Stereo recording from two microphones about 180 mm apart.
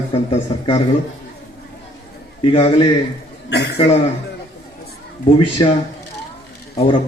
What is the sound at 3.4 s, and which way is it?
Speech, 70° left (ahead or behind).